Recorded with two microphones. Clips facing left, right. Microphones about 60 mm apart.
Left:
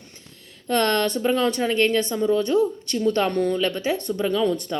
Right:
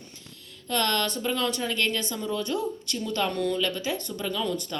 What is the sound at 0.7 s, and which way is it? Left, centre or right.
Speech, left.